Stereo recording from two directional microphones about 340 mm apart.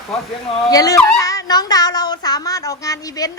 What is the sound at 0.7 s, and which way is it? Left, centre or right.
A woman's voice, centre.